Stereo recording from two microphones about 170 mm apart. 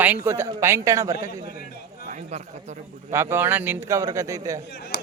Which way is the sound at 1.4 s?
65° left (ahead or behind).